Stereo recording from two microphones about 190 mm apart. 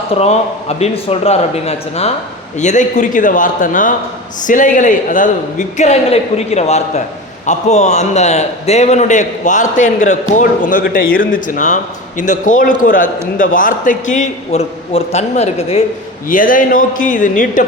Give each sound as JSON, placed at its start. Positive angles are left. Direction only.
{"t": 0.1, "sound": "a man's voice", "side_deg": 35}
{"t": 16.3, "sound": "a man's voice", "side_deg": 45}